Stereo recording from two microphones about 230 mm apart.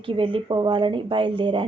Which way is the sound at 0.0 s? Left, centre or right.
Right.